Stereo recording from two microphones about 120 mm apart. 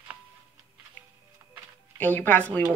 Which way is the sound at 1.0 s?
15° left (ahead or behind).